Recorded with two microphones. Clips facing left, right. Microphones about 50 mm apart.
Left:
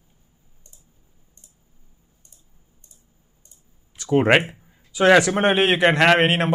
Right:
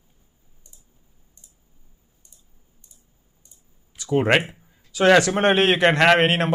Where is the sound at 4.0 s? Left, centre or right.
Left.